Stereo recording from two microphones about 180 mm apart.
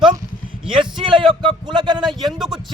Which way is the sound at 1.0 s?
25° right (ahead or behind).